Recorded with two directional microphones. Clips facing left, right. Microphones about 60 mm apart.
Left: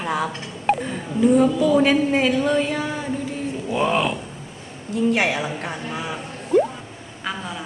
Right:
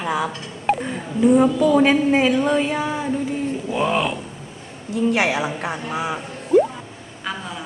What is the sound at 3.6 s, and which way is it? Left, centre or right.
Speech, centre.